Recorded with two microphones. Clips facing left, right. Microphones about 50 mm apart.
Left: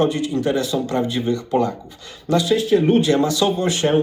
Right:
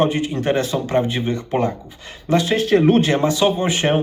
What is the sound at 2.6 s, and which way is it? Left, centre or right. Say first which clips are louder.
Speech: right 4 dB; right.